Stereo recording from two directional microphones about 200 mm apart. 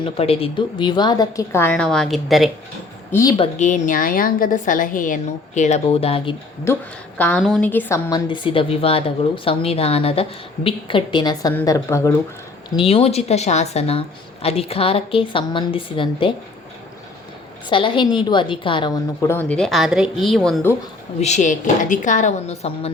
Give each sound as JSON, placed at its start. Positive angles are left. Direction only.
{"t": 0.0, "sound": "a woman's voice", "side_deg": 30}
{"t": 3.1, "sound": "a woman's voice", "side_deg": 15}
{"t": 3.6, "sound": "a woman's voice", "side_deg": 35}
{"t": 6.7, "sound": "a woman's voice", "side_deg": 10}
{"t": 12.7, "sound": "a woman's voice", "side_deg": 25}
{"t": 17.7, "sound": "a woman's voice", "side_deg": 25}
{"t": 21.2, "sound": "a woman's voice", "side_deg": 35}